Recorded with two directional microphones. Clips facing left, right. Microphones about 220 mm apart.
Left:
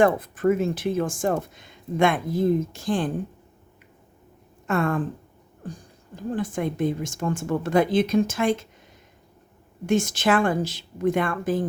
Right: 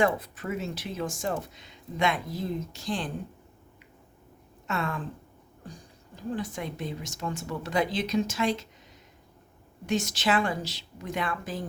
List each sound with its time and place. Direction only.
0.0 s speech: 50° left (ahead or behind)
4.6 s speech: 50° left (ahead or behind)
6.3 s speech: 50° left (ahead or behind)
9.8 s speech: 50° left (ahead or behind)